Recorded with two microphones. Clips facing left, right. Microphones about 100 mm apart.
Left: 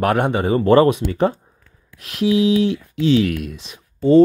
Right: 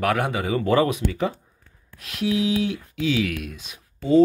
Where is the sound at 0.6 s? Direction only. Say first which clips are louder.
Left 7 dB; 50° left (ahead or behind).